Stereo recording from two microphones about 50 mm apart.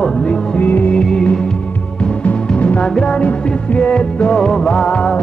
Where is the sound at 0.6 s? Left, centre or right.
Left.